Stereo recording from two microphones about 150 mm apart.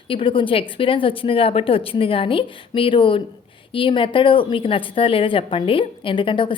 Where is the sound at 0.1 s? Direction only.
35° left (ahead or behind).